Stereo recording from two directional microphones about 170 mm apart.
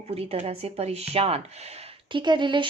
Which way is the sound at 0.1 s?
35° right (ahead or behind).